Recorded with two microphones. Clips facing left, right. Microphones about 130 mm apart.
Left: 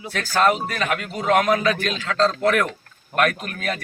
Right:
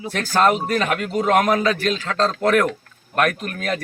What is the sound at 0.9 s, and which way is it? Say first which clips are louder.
Speech: even; 45° right (ahead or behind).